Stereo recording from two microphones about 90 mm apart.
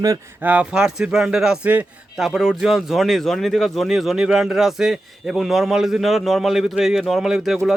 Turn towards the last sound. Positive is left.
turn(degrees=-5)  # may be behind; listen again after turning